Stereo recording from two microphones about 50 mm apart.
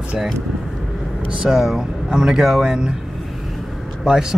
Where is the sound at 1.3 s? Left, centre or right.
Centre.